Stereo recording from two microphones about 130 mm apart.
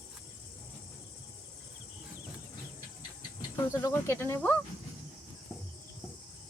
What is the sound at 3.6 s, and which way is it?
Speech, 15° left (ahead or behind).